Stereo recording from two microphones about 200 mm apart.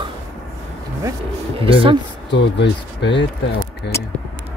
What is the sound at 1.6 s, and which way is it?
Speech, 25° right (ahead or behind).